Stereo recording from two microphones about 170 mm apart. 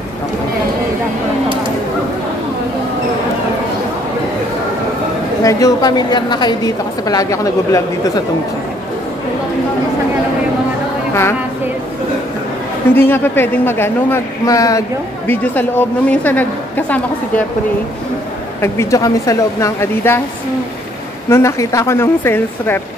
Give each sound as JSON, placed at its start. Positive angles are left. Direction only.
{"t": 5.4, "sound": "a woman's voice", "side_deg": 20}
{"t": 12.9, "sound": "speech", "side_deg": 10}
{"t": 18.6, "sound": "speech", "side_deg": 15}
{"t": 21.3, "sound": "speech", "side_deg": 15}